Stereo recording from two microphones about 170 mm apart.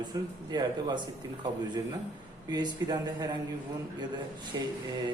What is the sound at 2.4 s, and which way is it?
Speech, 25° right (ahead or behind).